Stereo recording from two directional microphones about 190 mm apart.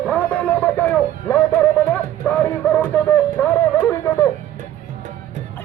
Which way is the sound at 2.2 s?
10° left (ahead or behind).